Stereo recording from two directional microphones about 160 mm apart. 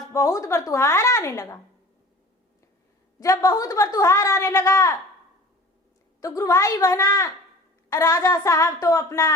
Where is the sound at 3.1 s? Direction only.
20° left (ahead or behind).